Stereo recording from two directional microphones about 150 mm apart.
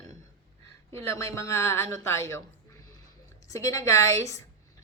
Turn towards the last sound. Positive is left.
turn(degrees=20)  # may be behind; listen again after turning